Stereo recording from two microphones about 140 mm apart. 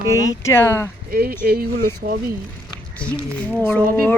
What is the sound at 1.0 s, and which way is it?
Speech, 90° right.